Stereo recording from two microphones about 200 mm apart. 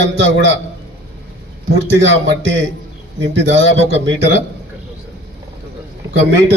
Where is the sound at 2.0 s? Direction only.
65° right (ahead or behind).